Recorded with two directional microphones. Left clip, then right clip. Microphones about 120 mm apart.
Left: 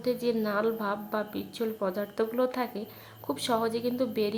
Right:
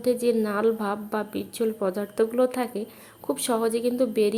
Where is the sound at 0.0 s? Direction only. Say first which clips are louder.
Right 6 dB; 25° right (ahead or behind).